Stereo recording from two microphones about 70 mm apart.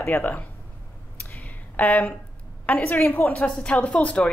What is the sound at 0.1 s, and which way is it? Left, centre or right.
Speech, left.